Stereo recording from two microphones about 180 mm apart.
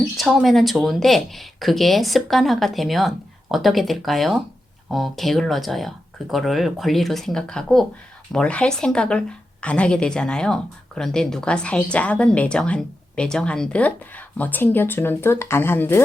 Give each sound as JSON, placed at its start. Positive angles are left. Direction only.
{"t": 0.2, "sound": "a woman's voice", "side_deg": 0}